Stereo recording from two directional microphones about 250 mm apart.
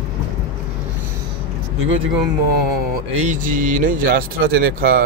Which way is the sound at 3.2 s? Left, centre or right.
Right.